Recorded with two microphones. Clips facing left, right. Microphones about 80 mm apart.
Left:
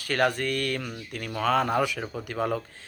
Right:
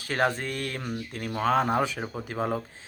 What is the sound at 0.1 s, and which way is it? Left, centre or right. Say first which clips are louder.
Speech: left 2 dB; right.